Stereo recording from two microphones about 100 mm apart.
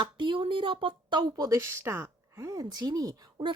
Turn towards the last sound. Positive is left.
turn(degrees=-40)  # may be behind; listen again after turning